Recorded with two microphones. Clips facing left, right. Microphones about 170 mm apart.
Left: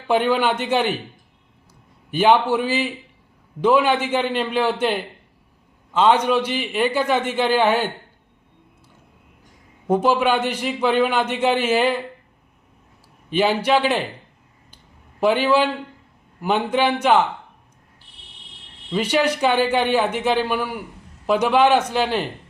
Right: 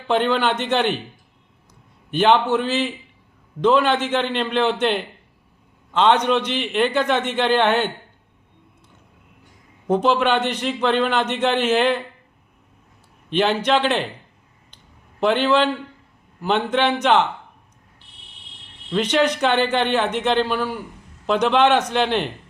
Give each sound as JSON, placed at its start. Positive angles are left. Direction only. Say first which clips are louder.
{"t": 0.1, "sound": "a man's voice", "louder": "left 1 dB", "side_deg": 10}
{"t": 2.0, "sound": "a man's voice", "louder": "even", "side_deg": 10}
{"t": 9.8, "sound": "a man's voice", "louder": "even", "side_deg": 10}
{"t": 13.3, "sound": "a man's voice", "louder": "left 1 dB", "side_deg": 10}
{"t": 15.2, "sound": "a man's voice", "louder": "even", "side_deg": 5}
{"t": 18.9, "sound": "a man's voice", "louder": "right 1 dB", "side_deg": 5}